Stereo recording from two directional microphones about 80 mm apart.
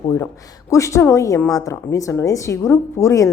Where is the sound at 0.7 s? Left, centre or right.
Left.